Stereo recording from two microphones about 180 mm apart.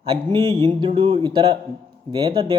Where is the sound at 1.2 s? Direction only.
20° right (ahead or behind).